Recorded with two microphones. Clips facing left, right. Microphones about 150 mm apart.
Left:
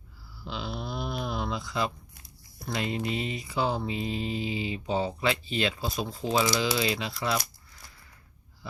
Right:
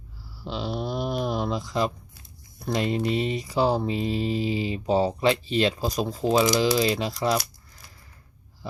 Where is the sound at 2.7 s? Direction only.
40° right (ahead or behind).